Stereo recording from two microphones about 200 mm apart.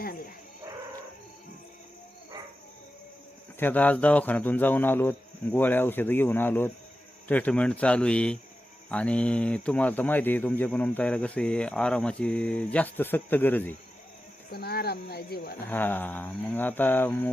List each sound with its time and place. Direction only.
3.6 s speech: 10° left (ahead or behind)
14.5 s speech: 50° left (ahead or behind)
15.7 s speech: 10° left (ahead or behind)